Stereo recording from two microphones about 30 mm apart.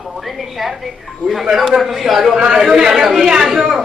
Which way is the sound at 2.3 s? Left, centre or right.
Right.